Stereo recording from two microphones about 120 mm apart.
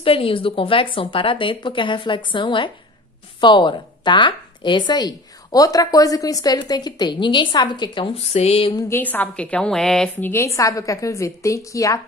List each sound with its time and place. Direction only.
0.0 s a woman's voice: 50° left (ahead or behind)
8.7 s a woman's voice: 20° left (ahead or behind); by 10.1 s 5° left (ahead or behind)
10.2 s a woman's voice: 25° left (ahead or behind)